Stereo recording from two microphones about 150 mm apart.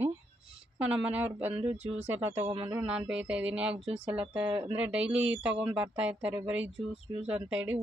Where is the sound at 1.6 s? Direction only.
45° right (ahead or behind).